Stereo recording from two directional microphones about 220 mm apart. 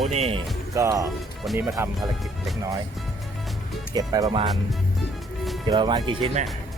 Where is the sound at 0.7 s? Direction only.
15° right (ahead or behind).